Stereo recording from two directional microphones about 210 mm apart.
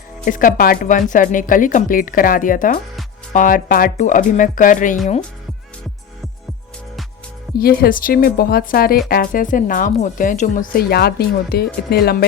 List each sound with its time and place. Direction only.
0.3 s a woman's voice: 40° left (ahead or behind)
7.6 s speech: 45° left (ahead or behind)